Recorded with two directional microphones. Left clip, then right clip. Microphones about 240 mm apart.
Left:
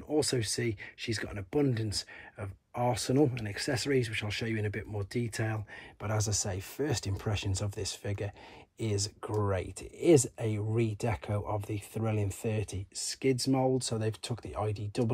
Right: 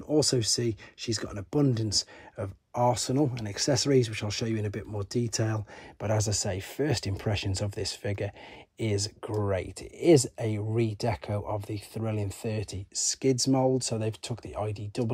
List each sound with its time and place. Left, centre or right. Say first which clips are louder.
0.1 s speech: right 5 dB; centre
6.1 s speech: right 3 dB; right
6.4 s speech: right 4 dB; centre